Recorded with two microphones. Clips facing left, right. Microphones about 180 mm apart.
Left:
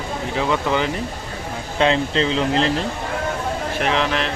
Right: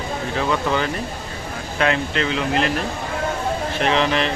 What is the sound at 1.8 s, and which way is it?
Speech, 25° left (ahead or behind).